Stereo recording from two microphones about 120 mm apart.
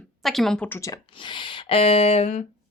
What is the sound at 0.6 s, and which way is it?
Speech, 20° left (ahead or behind).